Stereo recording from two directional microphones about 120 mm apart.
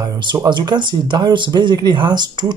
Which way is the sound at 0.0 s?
40° right (ahead or behind).